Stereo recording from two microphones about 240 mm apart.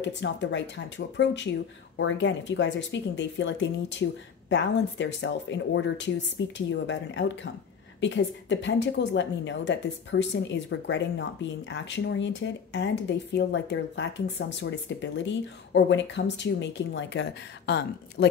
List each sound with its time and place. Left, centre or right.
0.0 s a woman's voice: left